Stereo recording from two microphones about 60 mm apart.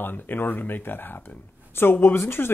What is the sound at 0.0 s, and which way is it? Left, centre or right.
Speech, left.